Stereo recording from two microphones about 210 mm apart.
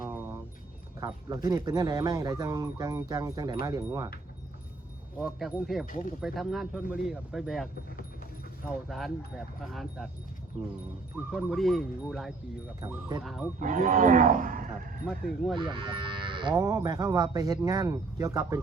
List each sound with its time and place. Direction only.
0.0 s vehicle: 10° right (ahead or behind)
0.9 s speech: 15° right (ahead or behind)
5.2 s speech: 5° right (ahead or behind)
5.8 s speech: 40° left (ahead or behind)
6.2 s speech: centre (ahead or behind)
8.9 s speech: centre (ahead or behind)
11.3 s speech: centre (ahead or behind)
12.8 s speech: 20° right (ahead or behind)
13.2 s speech: centre (ahead or behind)
13.6 s speech: 40° right (ahead or behind)
15.0 s speech: centre (ahead or behind)
15.7 s speech: 25° right (ahead or behind)